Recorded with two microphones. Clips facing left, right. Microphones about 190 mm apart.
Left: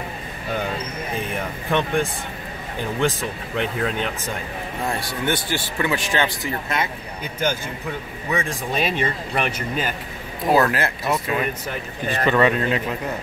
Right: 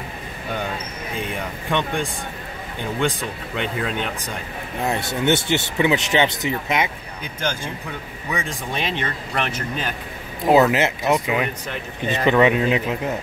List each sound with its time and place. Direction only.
1.7 s speech: 5° left (ahead or behind)
3.5 s speech: centre (ahead or behind)
4.8 s speech: 25° right (ahead or behind)
8.3 s speech: centre (ahead or behind)
10.5 s speech: 20° right (ahead or behind)